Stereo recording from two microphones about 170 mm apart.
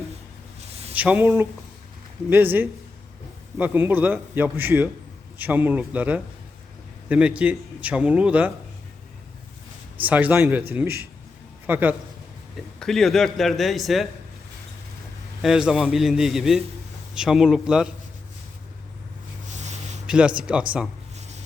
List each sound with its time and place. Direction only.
0.6 s a sound: 35° right (ahead or behind)
0.9 s a man's voice: 10° right (ahead or behind)
10.0 s a man's voice: 10° right (ahead or behind)
12.8 s speech: centre (ahead or behind)
15.4 s speech: 5° right (ahead or behind)
19.5 s a sound: 45° right (ahead or behind)
20.1 s a man's voice: 5° right (ahead or behind)
21.2 s rub: 40° right (ahead or behind)